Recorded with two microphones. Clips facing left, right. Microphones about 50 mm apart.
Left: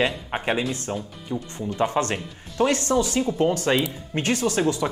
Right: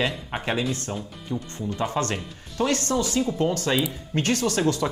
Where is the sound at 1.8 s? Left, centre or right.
Left.